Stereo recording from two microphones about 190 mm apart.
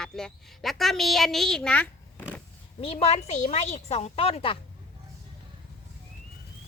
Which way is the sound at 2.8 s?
30° left (ahead or behind).